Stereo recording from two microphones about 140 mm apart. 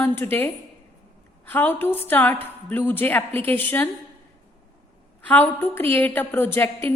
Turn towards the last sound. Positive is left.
turn(degrees=15)  # may be behind; listen again after turning